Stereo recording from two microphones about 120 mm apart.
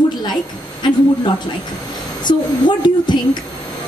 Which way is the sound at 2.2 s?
40° left (ahead or behind).